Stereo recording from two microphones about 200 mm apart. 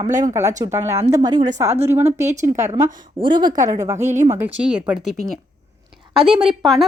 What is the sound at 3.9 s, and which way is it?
Speech, 35° right (ahead or behind).